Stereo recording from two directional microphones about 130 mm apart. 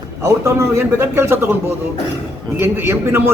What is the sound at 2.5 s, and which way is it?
Speech, 20° right (ahead or behind).